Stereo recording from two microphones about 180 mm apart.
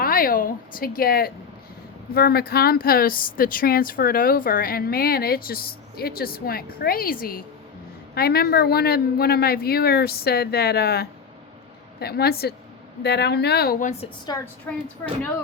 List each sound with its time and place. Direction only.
0.0 s a woman's voice: 55° left (ahead or behind)
14.7 s a woman's voice: 10° left (ahead or behind)